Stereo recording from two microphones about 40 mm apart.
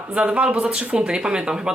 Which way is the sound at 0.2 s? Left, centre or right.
Right.